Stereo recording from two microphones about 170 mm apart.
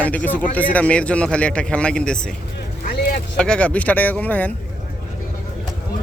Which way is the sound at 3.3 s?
5° left (ahead or behind).